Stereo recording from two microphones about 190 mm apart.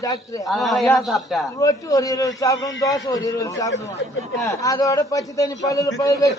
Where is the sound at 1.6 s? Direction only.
20° left (ahead or behind).